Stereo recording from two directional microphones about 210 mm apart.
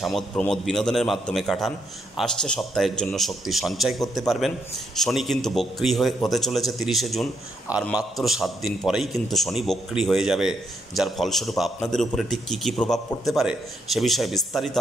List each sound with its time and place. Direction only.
0.3 s a man's voice: 5° left (ahead or behind)